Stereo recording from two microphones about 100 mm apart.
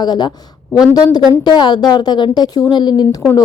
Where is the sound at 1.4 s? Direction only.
45° left (ahead or behind).